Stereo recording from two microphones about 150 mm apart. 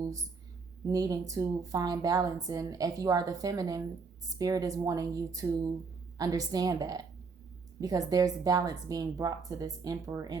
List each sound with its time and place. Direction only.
0.9 s a woman's voice: 25° right (ahead or behind)